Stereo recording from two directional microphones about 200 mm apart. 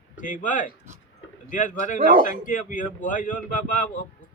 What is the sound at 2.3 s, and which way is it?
Speech, 40° left (ahead or behind).